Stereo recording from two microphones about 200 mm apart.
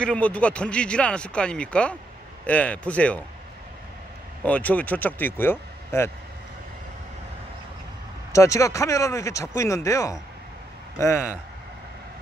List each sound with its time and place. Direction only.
0.0 s speech: 5° left (ahead or behind)
4.4 s speech: 10° left (ahead or behind)
8.4 s speech: 15° left (ahead or behind)